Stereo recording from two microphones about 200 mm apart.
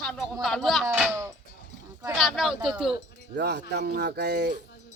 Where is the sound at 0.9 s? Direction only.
10° right (ahead or behind).